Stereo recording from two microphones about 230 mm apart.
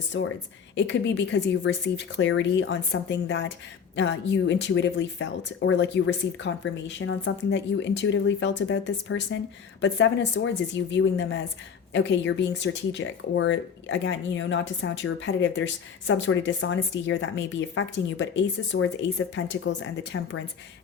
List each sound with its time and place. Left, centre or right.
0.1 s speech: left